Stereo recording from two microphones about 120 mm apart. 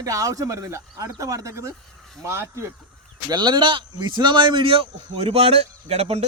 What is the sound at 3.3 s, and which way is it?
Speech, 35° right (ahead or behind).